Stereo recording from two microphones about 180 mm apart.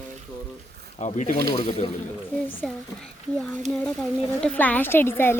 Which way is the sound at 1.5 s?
30° left (ahead or behind).